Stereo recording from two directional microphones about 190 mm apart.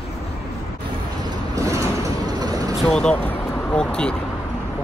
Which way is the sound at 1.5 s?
15° right (ahead or behind).